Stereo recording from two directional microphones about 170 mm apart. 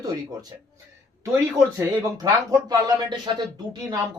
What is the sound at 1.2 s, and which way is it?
Speech, 15° right (ahead or behind).